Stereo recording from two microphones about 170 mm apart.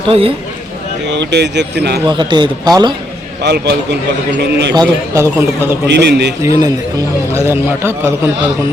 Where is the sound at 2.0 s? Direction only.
25° right (ahead or behind).